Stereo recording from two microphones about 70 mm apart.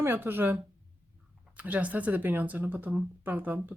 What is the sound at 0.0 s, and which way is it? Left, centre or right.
Speech, right.